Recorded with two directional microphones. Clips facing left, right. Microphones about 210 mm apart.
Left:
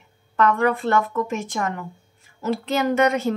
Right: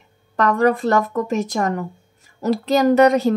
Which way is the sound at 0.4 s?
40° right (ahead or behind).